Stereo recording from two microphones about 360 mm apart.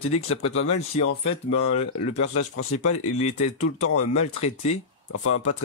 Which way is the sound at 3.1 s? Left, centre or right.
Centre.